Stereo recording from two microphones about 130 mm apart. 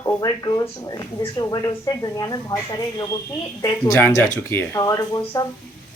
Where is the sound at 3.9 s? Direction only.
15° left (ahead or behind).